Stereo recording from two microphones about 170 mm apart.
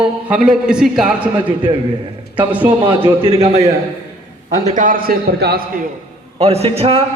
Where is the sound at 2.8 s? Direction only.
30° right (ahead or behind).